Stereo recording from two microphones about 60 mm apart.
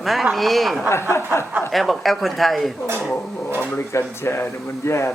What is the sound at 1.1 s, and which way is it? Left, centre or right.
Speech, left.